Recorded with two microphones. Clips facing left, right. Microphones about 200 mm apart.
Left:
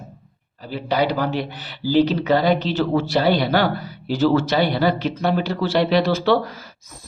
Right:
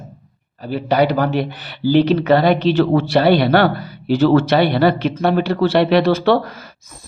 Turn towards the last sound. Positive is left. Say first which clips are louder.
# right 3 dB
turn(degrees=-50)  # may be behind; listen again after turning